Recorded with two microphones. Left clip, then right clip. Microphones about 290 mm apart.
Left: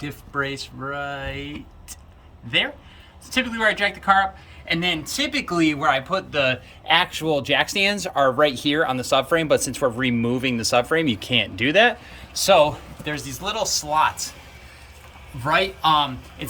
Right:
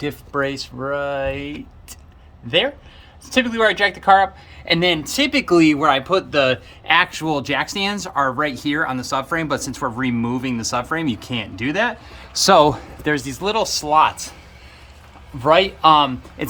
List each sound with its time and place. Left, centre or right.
0.3 s speech: centre
3.2 s speech: centre
6.8 s speech: centre
12.4 s speech: centre
15.4 s speech: centre